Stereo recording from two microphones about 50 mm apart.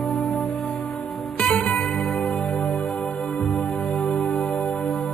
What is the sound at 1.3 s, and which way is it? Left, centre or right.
Music, left.